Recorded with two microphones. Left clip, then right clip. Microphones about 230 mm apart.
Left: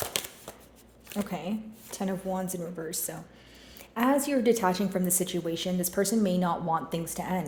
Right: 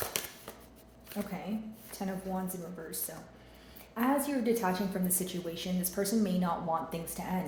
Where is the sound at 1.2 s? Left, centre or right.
Left.